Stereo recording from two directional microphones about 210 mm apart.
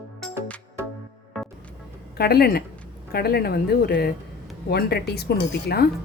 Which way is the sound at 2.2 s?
45° left (ahead or behind).